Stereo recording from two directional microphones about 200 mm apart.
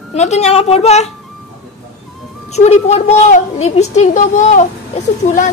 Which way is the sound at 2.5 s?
35° left (ahead or behind).